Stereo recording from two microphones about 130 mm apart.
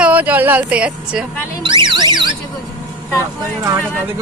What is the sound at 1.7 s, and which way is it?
Speech, 35° right (ahead or behind).